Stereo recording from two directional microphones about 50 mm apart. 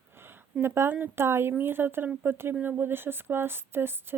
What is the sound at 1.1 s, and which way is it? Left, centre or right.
Speech, right.